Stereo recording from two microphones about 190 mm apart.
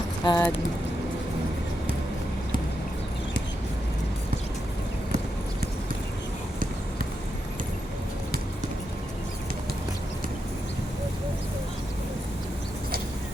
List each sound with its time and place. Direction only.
0.3 s speech: 15° left (ahead or behind)